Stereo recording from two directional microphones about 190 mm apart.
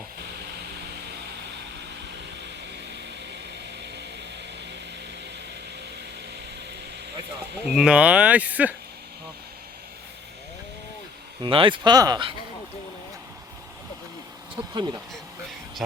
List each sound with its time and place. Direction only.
7.8 s speech: 5° right (ahead or behind)
11.4 s speech: 25° right (ahead or behind)
14.5 s speech: 25° right (ahead or behind)